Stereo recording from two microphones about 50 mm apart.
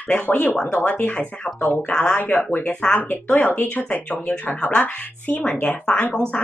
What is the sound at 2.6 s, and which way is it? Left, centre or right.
Speech, left.